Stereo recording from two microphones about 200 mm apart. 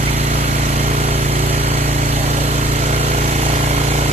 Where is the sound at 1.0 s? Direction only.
30° right (ahead or behind).